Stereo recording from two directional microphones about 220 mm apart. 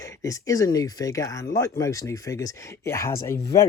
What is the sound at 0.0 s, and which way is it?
Speech, 15° left (ahead or behind).